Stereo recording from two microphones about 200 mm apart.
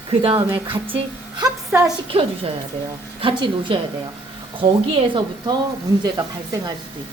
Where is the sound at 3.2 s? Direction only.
25° right (ahead or behind).